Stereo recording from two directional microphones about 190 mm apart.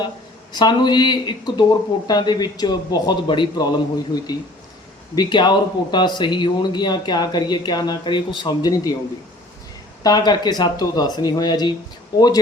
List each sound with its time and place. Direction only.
0.5 s speech: 20° left (ahead or behind)
10.0 s speech: 20° left (ahead or behind)